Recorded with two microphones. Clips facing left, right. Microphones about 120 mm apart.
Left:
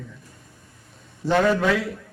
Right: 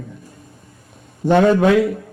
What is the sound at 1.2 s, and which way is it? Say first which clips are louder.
Speech: right 6 dB; 55° right (ahead or behind).